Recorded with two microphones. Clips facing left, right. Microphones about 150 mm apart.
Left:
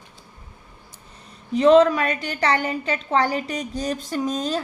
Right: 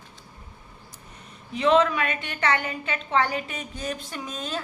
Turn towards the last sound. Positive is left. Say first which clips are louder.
# left 9 dB
turn(degrees=40)  # may be behind; listen again after turning